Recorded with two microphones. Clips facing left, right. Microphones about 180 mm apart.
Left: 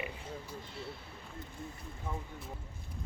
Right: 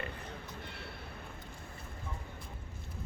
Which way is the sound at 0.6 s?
65° right (ahead or behind).